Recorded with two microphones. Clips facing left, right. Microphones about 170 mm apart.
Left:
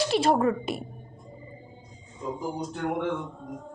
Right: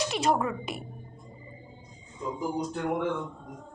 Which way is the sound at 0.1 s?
30° left (ahead or behind).